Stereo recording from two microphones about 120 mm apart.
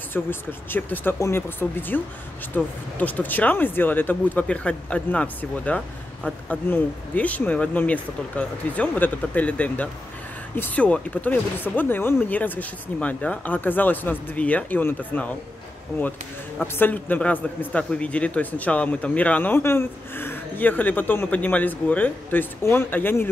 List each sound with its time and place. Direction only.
0.1 s a man's voice: 15° left (ahead or behind)
16.7 s a man's voice: 15° left (ahead or behind)